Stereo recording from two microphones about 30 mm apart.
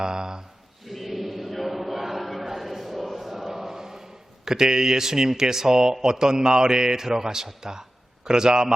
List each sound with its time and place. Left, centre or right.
0.0 s speech: right
0.9 s chant: centre
4.4 s speech: centre